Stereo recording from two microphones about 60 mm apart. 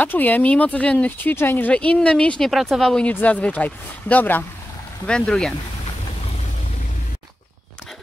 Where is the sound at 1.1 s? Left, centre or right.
Left.